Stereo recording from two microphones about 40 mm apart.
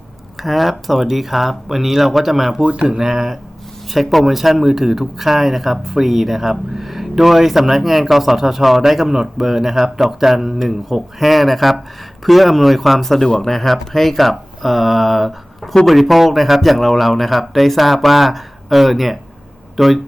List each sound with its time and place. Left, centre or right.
0.3 s speech: centre
2.6 s speech: right
2.8 s speech: centre
3.9 s speech: centre